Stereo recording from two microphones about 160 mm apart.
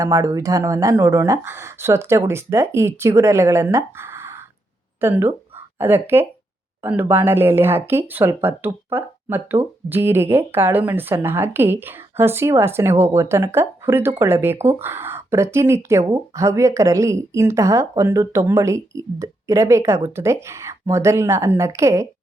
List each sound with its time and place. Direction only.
0.0 s a woman's voice: 20° right (ahead or behind)